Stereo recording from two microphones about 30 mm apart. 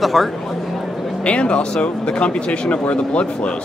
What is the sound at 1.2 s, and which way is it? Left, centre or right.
Speech, left.